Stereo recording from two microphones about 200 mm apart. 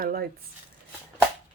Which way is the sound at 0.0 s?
50° right (ahead or behind).